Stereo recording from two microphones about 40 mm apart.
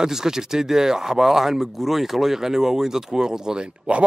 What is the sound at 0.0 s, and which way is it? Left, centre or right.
Speech, centre.